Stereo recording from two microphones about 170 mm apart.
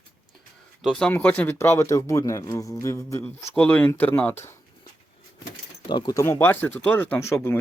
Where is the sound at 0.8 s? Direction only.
Centre (ahead or behind).